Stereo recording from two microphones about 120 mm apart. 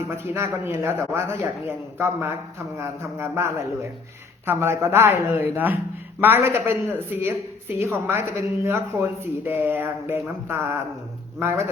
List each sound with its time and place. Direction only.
0.3 s speech: 20° right (ahead or behind)